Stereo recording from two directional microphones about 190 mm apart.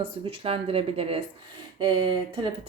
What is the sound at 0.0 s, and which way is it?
Speech, 30° right (ahead or behind).